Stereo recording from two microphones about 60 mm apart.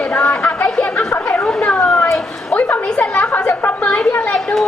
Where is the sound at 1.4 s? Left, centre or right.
Centre.